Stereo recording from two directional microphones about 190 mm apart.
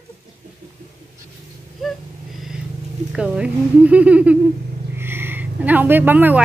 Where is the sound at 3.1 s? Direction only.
5° right (ahead or behind).